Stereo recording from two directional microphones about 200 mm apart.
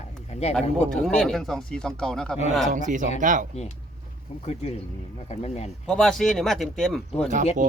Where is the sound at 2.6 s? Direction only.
40° right (ahead or behind).